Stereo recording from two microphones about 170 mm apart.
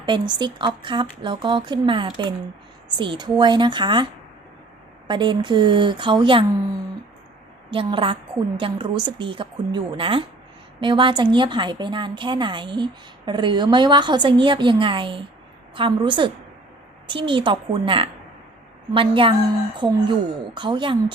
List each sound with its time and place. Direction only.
0.0 s speech: 25° right (ahead or behind)
5.0 s a woman's voice: 30° right (ahead or behind)